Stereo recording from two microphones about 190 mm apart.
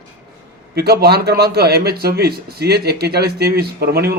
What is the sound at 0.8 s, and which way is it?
A man's voice, 55° right (ahead or behind).